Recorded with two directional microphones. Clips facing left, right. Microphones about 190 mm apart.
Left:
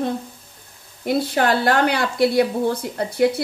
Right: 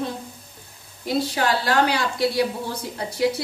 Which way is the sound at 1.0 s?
55° left (ahead or behind).